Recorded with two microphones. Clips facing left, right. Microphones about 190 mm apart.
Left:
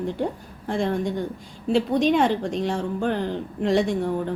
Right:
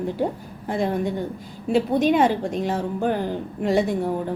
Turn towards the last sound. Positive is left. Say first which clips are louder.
# even
turn(degrees=-5)  # may be behind; listen again after turning